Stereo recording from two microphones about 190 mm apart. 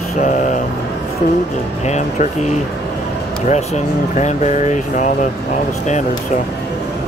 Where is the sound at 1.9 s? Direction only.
40° left (ahead or behind).